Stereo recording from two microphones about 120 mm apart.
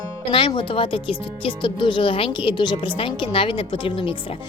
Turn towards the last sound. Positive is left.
turn(degrees=50)  # may be behind; listen again after turning